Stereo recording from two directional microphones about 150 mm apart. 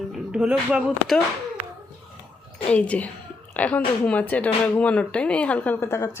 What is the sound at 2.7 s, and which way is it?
A woman's voice, 10° left (ahead or behind).